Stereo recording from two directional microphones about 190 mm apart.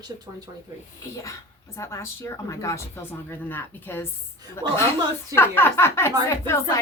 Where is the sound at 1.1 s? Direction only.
15° left (ahead or behind).